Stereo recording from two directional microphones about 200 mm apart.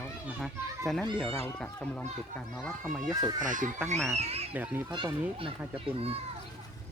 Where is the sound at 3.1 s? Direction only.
20° right (ahead or behind).